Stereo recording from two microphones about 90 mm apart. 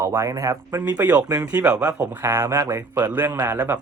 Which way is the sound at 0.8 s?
20° right (ahead or behind).